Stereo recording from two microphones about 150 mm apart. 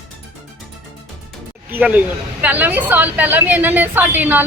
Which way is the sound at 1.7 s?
10° right (ahead or behind).